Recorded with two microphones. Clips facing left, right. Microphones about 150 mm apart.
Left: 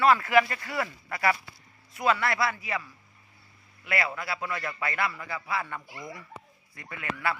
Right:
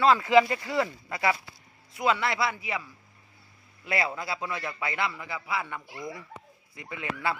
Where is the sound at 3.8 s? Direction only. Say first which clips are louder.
Right 1 dB; 25° right (ahead or behind).